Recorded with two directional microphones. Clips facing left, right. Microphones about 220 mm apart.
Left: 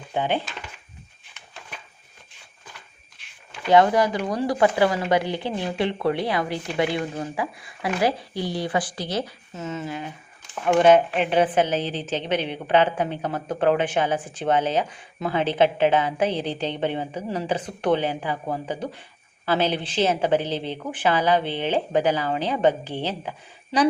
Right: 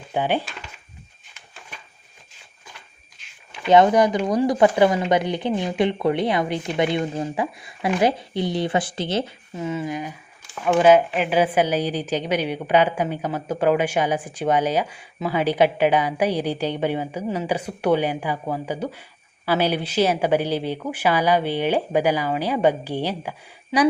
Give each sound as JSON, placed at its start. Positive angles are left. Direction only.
{"t": 0.1, "sound": "speech", "side_deg": -15}
{"t": 3.7, "sound": "speech", "side_deg": -20}
{"t": 9.6, "sound": "a woman's voice", "side_deg": -10}